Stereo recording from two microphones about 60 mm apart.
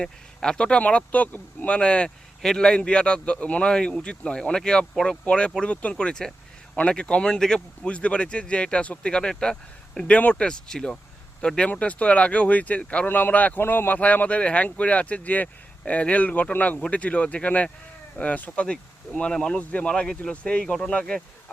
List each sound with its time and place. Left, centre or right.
0.0 s a man's voice: centre
2.0 s a man's voice: centre
7.9 s speech: left
10.1 s a man's voice: left
13.1 s a man's voice: left; by 21.2 s centre